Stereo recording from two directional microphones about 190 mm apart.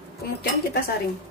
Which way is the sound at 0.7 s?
55° left (ahead or behind).